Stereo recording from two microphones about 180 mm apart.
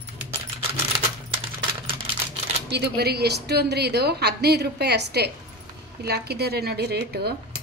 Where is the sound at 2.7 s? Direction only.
65° right (ahead or behind).